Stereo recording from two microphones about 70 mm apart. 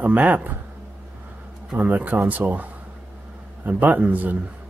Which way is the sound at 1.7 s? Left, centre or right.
Right.